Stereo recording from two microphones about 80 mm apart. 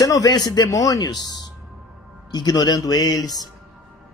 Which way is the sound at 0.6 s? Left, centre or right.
Left.